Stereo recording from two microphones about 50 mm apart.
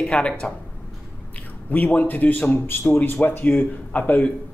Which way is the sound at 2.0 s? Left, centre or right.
Left.